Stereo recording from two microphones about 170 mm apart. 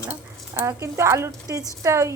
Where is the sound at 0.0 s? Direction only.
15° right (ahead or behind).